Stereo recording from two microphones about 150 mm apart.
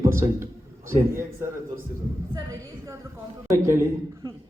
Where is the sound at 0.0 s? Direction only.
20° right (ahead or behind).